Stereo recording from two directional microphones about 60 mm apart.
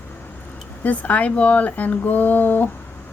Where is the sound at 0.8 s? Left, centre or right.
Left.